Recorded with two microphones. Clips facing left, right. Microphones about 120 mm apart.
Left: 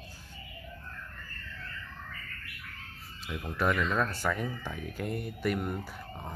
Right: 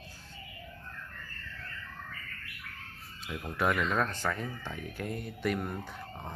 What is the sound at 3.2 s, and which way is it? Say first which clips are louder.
Speech: left 1 dB; centre (ahead or behind).